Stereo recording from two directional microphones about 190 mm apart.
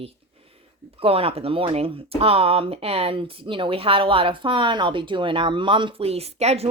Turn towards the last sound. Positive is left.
turn(degrees=-35)  # may be behind; listen again after turning